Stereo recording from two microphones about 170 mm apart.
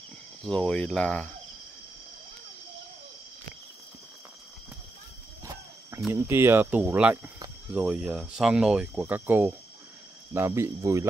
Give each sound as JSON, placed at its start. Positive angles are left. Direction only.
{"t": 0.4, "sound": "speech", "side_deg": 5}
{"t": 6.1, "sound": "speech", "side_deg": -15}